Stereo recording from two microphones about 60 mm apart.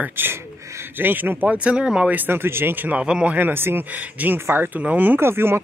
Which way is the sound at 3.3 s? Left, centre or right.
Right.